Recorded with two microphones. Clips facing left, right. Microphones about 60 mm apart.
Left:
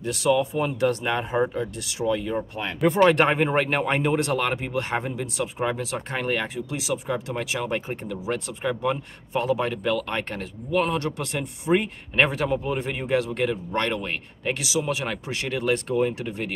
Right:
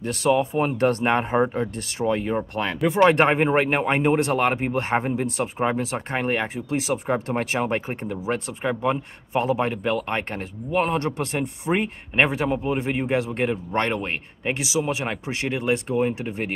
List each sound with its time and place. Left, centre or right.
0.0 s speech: right
2.8 s speech: centre
3.1 s speech: right